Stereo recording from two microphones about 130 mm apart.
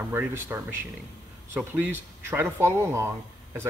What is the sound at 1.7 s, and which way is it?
Speech, 15° right (ahead or behind).